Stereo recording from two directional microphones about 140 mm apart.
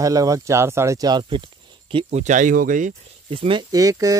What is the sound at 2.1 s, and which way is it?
Speech, 60° right (ahead or behind).